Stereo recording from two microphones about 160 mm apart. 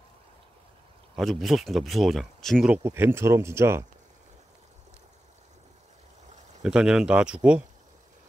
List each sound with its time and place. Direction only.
1.1 s speech: centre (ahead or behind)
2.7 s speech: 15° right (ahead or behind)
6.6 s speech: 5° right (ahead or behind)